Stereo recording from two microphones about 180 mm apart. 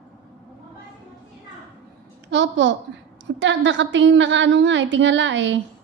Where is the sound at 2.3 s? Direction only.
90° right.